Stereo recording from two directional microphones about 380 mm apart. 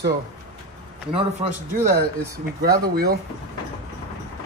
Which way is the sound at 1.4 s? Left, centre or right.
Centre.